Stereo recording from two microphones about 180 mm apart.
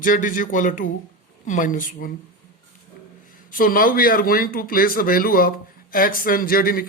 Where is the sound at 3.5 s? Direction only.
50° left (ahead or behind).